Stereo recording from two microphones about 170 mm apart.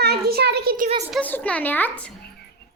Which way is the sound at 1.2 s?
10° left (ahead or behind).